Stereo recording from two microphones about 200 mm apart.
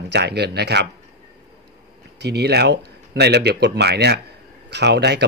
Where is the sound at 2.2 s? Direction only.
55° right (ahead or behind).